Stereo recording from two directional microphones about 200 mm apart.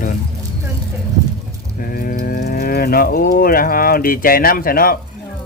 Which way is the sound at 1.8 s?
45° left (ahead or behind).